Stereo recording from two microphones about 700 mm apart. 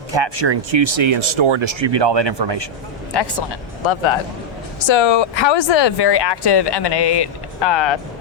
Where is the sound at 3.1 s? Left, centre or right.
Left.